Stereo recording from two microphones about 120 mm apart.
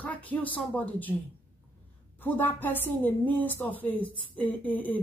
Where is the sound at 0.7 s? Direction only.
15° left (ahead or behind).